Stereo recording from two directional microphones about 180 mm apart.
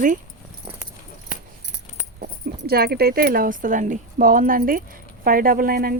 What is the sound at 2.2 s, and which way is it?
Speech, 55° right (ahead or behind).